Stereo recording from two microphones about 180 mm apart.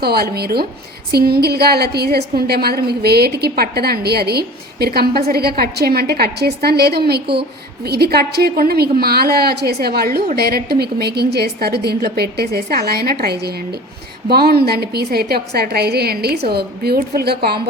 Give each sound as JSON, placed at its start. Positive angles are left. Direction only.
{"t": 0.0, "sound": "a woman's voice", "side_deg": -60}